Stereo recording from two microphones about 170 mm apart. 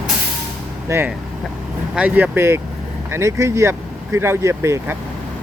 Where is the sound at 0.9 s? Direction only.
15° right (ahead or behind).